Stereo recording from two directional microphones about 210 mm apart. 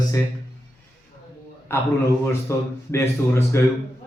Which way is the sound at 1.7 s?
10° left (ahead or behind).